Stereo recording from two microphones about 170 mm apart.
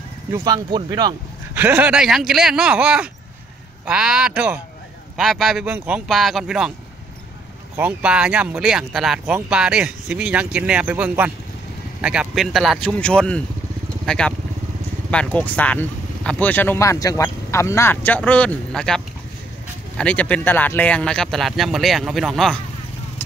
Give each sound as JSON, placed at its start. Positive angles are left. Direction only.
{"t": 0.3, "sound": "speech", "side_deg": -20}
{"t": 1.5, "sound": "speech", "side_deg": -10}
{"t": 7.7, "sound": "speech", "side_deg": -10}